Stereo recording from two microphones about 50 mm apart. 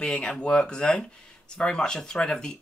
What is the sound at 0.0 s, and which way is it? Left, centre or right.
Speech, left.